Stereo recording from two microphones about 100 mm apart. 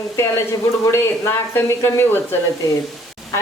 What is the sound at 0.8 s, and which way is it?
Speech, 25° left (ahead or behind).